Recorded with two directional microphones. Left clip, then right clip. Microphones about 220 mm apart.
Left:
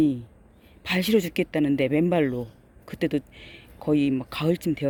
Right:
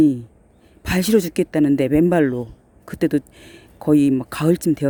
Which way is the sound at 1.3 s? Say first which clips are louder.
Right 5 dB; 85° right.